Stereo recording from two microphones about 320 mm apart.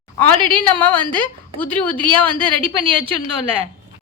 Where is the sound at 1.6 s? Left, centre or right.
Centre.